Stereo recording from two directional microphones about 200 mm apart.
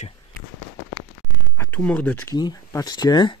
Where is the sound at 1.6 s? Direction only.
10° left (ahead or behind).